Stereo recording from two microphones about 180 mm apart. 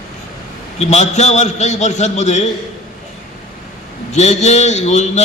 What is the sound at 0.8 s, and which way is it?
A man's voice, 40° left (ahead or behind).